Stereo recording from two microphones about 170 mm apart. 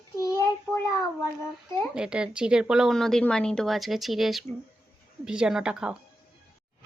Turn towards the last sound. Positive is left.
turn(degrees=-5)  # may be behind; listen again after turning